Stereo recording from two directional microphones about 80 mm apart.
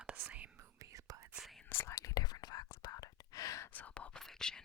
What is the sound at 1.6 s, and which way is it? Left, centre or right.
Whispering, left.